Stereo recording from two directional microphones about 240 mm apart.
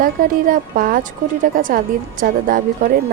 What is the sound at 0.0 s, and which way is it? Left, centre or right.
Speech, right.